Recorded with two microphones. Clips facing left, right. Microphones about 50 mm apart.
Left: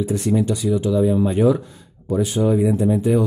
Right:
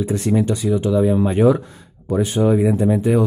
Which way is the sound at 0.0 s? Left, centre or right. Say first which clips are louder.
Right 1 dB; right.